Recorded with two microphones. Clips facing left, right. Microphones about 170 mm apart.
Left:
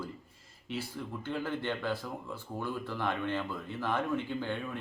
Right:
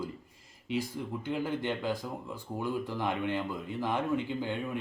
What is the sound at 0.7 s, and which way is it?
Speech, 15° right (ahead or behind).